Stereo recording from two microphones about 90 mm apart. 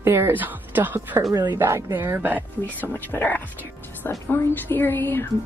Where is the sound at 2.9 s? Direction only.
25° left (ahead or behind).